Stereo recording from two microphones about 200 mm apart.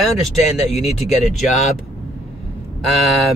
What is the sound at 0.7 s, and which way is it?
Speech, 30° left (ahead or behind).